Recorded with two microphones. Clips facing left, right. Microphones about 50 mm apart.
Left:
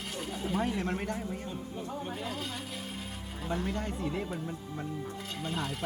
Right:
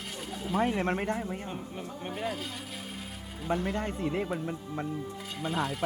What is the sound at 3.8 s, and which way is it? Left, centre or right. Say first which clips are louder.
Speech: right 3 dB; right.